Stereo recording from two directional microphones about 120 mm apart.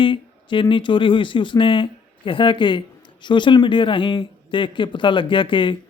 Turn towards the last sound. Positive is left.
turn(degrees=45)  # may be behind; listen again after turning